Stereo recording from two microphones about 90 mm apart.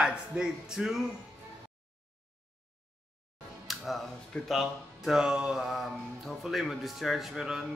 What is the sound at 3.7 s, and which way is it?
Speech, centre (ahead or behind).